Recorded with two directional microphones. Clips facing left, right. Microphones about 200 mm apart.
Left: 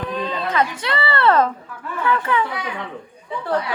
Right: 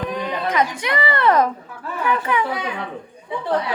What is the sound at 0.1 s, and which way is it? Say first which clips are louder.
Speech: right 1 dB; 15° right (ahead or behind).